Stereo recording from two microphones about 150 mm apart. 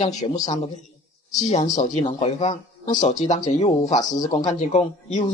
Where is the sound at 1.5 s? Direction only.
50° left (ahead or behind).